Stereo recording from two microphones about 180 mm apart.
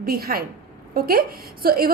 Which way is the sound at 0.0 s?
55° right (ahead or behind).